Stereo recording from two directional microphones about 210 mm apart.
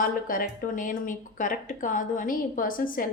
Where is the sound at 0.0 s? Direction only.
40° left (ahead or behind).